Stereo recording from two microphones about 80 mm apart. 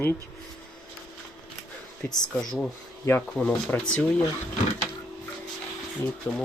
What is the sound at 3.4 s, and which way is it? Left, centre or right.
Speech, centre.